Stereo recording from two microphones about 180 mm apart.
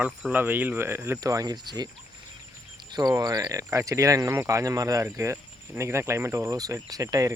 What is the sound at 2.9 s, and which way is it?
Speech, 20° right (ahead or behind).